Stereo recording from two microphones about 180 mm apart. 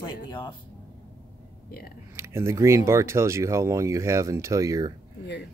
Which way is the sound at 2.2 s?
15° right (ahead or behind).